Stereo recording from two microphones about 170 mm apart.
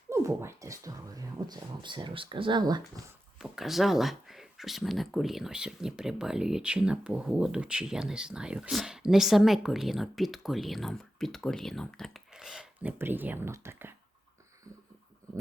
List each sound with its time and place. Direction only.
0.1 s speech: 15° right (ahead or behind)
3.3 s speech: 5° right (ahead or behind)